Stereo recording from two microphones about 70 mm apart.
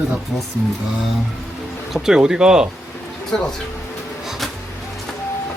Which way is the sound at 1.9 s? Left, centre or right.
Centre.